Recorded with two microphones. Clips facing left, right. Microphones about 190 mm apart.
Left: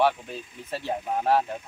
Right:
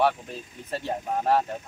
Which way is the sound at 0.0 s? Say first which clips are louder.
Left 1 dB; centre (ahead or behind).